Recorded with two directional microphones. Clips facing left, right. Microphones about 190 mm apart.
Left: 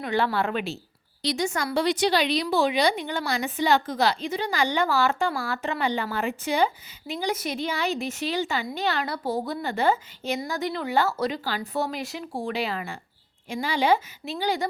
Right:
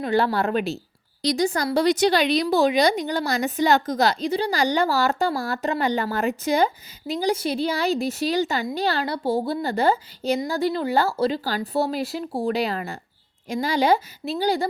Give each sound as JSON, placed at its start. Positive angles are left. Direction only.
{"t": 0.0, "sound": "speech", "side_deg": -40}